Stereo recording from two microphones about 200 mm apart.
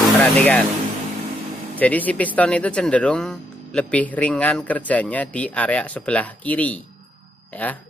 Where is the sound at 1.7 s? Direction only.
10° left (ahead or behind).